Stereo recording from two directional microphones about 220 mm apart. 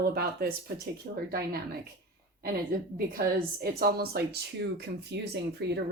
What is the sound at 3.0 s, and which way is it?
Speech, 40° right (ahead or behind).